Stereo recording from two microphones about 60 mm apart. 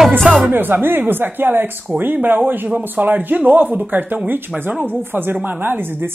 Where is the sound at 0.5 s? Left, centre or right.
Right.